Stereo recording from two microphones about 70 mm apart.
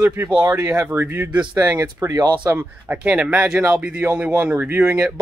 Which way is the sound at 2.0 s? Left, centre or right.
Right.